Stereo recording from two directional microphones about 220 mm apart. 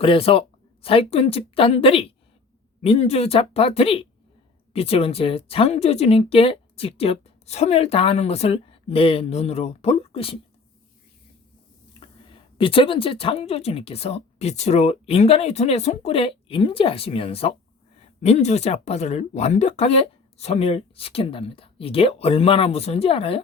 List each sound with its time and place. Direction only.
0.0 s speech: 25° left (ahead or behind)
12.3 s speech: 25° left (ahead or behind)